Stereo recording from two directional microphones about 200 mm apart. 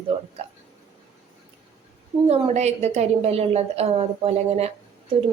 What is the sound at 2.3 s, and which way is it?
A woman's voice, 35° right (ahead or behind).